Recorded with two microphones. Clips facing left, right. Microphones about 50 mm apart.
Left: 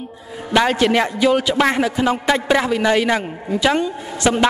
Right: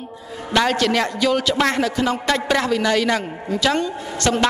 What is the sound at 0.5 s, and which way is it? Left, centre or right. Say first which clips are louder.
A man's voice: left 3 dB; centre.